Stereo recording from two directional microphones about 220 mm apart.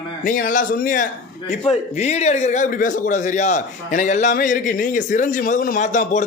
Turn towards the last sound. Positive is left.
turn(degrees=35)  # may be behind; listen again after turning